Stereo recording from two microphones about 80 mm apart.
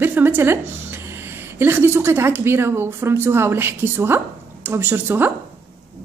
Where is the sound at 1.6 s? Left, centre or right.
Right.